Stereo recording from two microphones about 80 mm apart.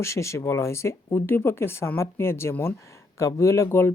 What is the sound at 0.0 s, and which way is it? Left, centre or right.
Speech, left.